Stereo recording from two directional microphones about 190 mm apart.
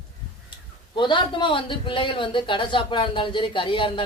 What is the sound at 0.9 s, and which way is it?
A man's voice, 25° left (ahead or behind).